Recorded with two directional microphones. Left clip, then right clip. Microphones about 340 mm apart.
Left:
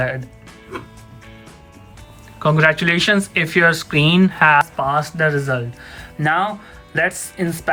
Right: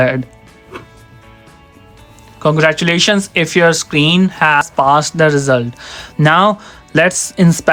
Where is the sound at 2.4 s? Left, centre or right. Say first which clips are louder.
Right 3 dB; centre.